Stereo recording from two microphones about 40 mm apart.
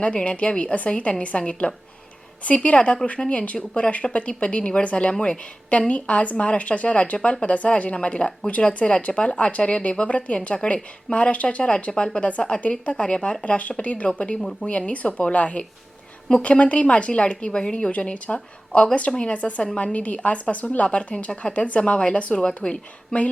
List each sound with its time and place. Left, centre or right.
0.0 s speech: left
10.5 s speech: left
11.1 s speech: left
13.4 s speech: left